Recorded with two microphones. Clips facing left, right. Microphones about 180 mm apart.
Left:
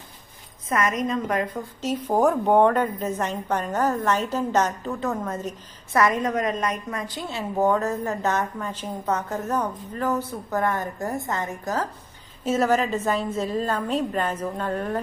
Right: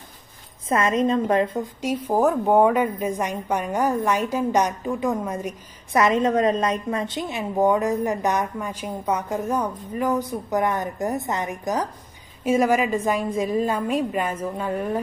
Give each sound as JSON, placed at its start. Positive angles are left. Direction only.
{"t": 0.7, "sound": "a woman's voice", "side_deg": -30}
{"t": 1.8, "sound": "a woman's voice", "side_deg": -10}